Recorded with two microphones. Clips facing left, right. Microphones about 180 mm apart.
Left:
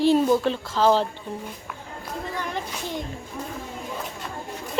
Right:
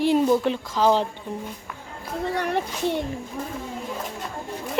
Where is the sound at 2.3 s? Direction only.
65° right (ahead or behind).